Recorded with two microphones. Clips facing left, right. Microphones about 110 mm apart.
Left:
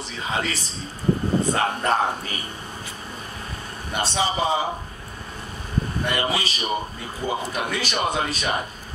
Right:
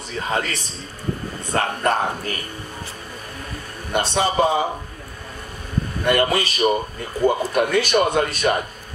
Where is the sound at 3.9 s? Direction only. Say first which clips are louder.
Right 4 dB; 55° right (ahead or behind).